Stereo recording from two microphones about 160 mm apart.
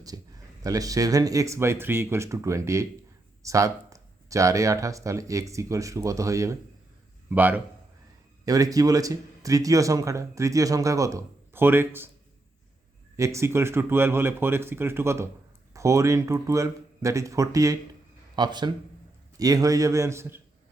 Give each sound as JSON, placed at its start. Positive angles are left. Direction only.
{"t": 0.1, "sound": "a sound", "side_deg": -20}
{"t": 0.6, "sound": "speech", "side_deg": -20}
{"t": 8.4, "sound": "speech", "side_deg": -20}
{"t": 13.1, "sound": "speech", "side_deg": -20}